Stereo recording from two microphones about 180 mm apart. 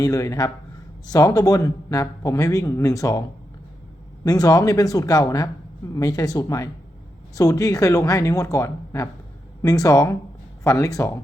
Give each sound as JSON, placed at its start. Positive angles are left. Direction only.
{"t": 0.0, "sound": "speech", "side_deg": 20}